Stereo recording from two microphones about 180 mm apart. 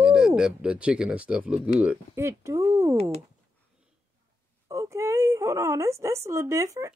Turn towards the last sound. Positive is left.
turn(degrees=-15)  # may be behind; listen again after turning